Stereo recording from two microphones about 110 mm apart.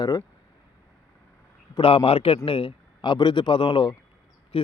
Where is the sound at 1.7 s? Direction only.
55° left (ahead or behind).